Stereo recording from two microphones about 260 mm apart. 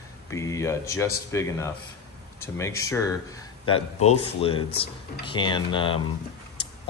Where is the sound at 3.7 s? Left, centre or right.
Left.